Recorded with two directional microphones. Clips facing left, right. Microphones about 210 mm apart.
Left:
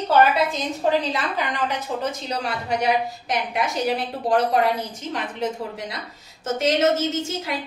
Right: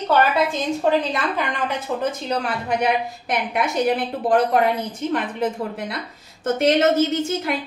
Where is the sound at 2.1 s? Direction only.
55° right (ahead or behind).